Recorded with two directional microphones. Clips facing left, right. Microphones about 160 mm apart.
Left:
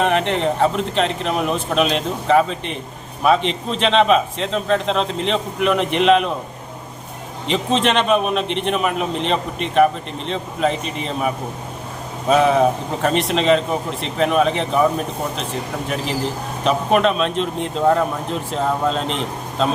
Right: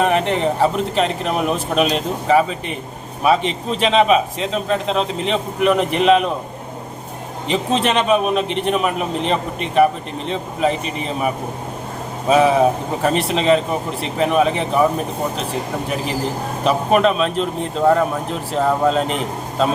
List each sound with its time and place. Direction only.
0.0 s a man's voice: 5° right (ahead or behind)
7.4 s a man's voice: 5° right (ahead or behind)
12.3 s a man's voice: 5° right (ahead or behind)
16.6 s a man's voice: 5° right (ahead or behind)
18.5 s a man's voice: 5° right (ahead or behind)